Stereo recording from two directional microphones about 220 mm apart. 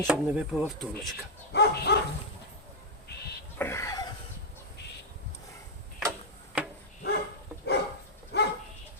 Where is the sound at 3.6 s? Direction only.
10° left (ahead or behind).